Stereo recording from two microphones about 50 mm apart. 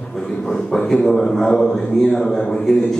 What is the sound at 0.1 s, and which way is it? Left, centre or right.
A man's voice, centre.